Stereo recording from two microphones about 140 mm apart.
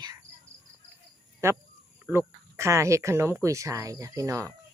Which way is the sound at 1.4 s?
20° right (ahead or behind).